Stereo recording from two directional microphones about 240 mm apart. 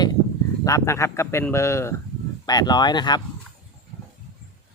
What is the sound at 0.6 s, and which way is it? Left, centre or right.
Speech, centre.